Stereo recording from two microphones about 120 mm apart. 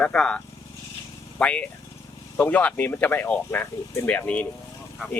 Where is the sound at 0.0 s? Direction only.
10° left (ahead or behind).